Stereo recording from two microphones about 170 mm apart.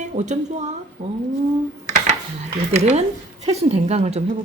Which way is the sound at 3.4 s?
40° right (ahead or behind).